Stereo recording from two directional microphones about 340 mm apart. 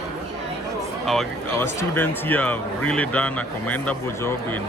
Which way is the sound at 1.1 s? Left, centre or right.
Centre.